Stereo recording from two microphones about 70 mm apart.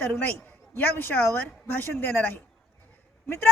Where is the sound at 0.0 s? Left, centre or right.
Left.